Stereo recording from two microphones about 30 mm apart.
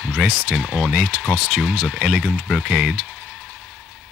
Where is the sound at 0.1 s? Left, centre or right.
Centre.